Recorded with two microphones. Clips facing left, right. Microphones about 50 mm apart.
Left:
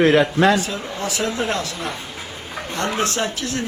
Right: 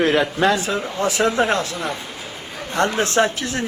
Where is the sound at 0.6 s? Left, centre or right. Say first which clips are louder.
Right 3 dB; right.